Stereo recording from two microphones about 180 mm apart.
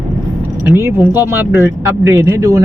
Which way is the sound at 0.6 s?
15° right (ahead or behind).